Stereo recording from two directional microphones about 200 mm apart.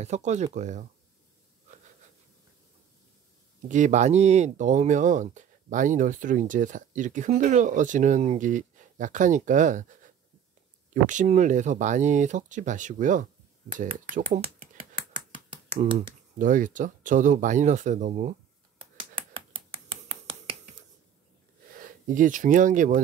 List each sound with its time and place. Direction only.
0.0 s speech: 35° right (ahead or behind)
3.6 s speech: 40° right (ahead or behind)
15.8 s speech: 25° right (ahead or behind)
16.3 s speech: 40° right (ahead or behind)
18.8 s finger snapping: 30° right (ahead or behind)
21.7 s speech: 40° right (ahead or behind)